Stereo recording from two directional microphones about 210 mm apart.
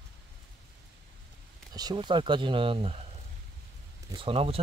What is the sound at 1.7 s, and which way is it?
Speech, 20° right (ahead or behind).